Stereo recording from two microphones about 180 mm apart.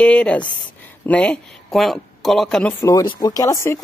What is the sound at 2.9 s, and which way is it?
Speech, 20° left (ahead or behind).